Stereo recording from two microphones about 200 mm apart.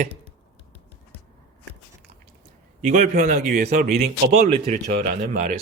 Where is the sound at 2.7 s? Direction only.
40° right (ahead or behind).